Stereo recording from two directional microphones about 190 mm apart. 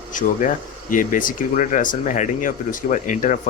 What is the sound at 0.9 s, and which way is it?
Speech, 45° left (ahead or behind).